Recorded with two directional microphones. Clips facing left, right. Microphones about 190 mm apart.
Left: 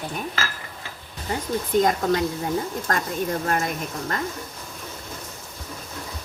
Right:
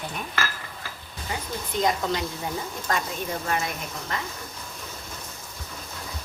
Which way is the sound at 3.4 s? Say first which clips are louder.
Left 3 dB; 50° left (ahead or behind).